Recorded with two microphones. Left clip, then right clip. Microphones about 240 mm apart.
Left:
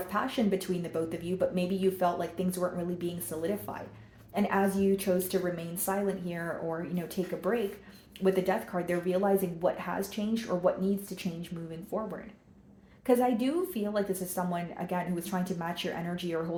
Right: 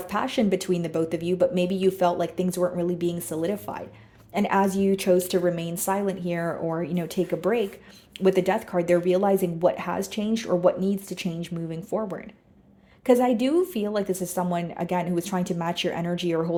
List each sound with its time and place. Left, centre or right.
0.1 s speech: right
8.2 s speech: right